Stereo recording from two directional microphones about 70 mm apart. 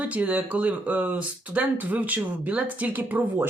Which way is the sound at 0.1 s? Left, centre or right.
Right.